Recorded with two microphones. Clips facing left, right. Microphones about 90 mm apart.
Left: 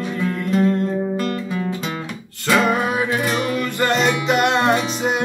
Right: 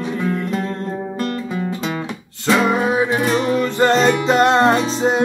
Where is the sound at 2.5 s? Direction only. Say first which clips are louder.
Right 2 dB; 20° right (ahead or behind).